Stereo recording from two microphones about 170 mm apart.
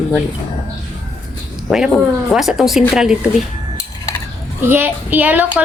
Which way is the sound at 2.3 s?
Centre (ahead or behind).